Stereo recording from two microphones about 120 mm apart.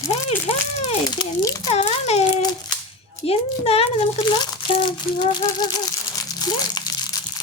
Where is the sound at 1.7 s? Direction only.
65° left (ahead or behind).